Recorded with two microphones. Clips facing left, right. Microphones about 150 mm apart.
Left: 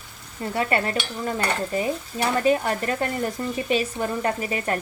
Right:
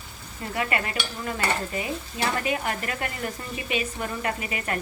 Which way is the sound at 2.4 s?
35° left (ahead or behind).